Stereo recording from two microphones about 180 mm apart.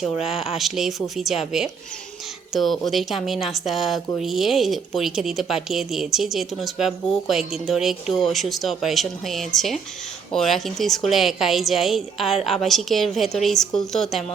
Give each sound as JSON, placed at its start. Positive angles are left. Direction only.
{"t": 0.5, "sound": "speech", "side_deg": 0}